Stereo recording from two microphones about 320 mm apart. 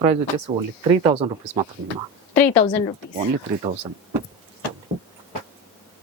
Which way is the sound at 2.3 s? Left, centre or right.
Centre.